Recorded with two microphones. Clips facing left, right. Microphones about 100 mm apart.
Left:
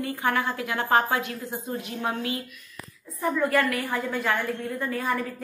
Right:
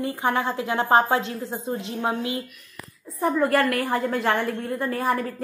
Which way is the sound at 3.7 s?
60° right (ahead or behind).